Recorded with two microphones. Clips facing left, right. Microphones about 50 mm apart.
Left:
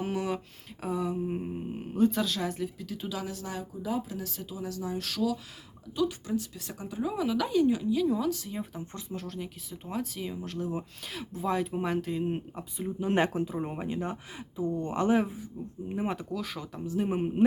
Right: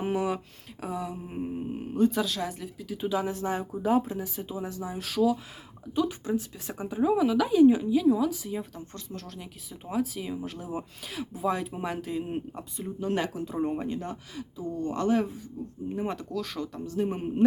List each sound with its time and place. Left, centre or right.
0.0 s speech: centre
3.1 s speech: right
4.2 s speech: centre
4.9 s speech: centre
8.7 s speech: centre
9.2 s speech: centre
13.1 s speech: left
13.4 s speech: centre